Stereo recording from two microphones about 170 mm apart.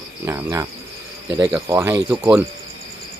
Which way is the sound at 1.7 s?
15° right (ahead or behind).